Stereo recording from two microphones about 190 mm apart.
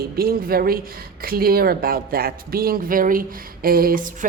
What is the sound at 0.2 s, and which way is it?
Speech, 50° right (ahead or behind).